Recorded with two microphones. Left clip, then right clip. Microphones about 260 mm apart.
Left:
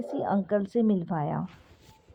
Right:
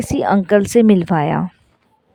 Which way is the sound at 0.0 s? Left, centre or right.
Right.